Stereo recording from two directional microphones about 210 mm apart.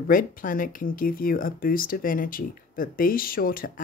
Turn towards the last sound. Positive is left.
turn(degrees=45)  # may be behind; listen again after turning